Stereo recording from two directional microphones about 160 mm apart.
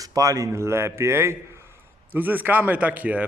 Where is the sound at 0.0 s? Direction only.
20° right (ahead or behind).